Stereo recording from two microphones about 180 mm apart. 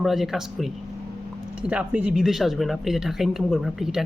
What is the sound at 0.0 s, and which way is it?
Speech, centre (ahead or behind).